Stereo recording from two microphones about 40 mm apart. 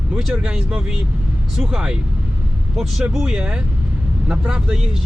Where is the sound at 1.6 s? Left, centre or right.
Centre.